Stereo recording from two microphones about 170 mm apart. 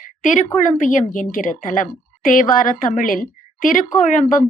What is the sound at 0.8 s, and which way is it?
A woman's voice, 50° left (ahead or behind).